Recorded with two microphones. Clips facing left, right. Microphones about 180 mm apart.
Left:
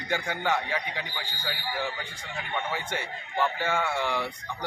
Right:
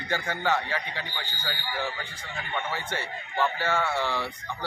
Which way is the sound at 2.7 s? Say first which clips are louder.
Even; 15° left (ahead or behind).